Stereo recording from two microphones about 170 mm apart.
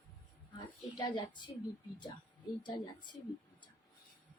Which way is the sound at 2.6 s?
25° left (ahead or behind).